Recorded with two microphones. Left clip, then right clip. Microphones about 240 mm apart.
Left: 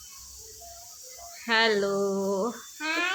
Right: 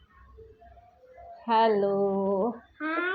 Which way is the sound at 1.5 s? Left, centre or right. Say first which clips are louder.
Right 1 dB; centre.